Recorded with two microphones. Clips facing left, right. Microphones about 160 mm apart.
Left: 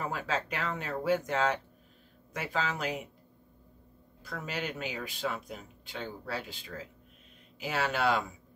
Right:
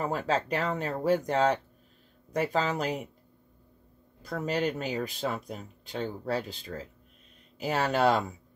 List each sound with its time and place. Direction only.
0.0 s speech: 40° right (ahead or behind)
4.2 s speech: 40° right (ahead or behind)